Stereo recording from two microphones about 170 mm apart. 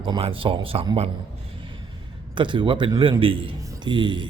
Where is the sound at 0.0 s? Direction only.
30° right (ahead or behind).